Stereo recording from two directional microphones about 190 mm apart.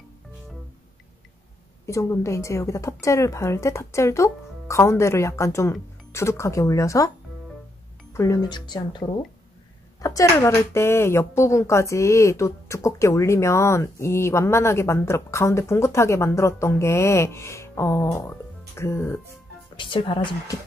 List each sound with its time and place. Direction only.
1.9 s speech: 15° left (ahead or behind)
8.1 s speech: 15° left (ahead or behind)
10.0 s speech: 15° left (ahead or behind)
19.8 s speech: 25° left (ahead or behind)